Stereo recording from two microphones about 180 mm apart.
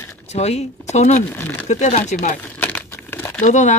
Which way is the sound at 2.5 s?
10° left (ahead or behind).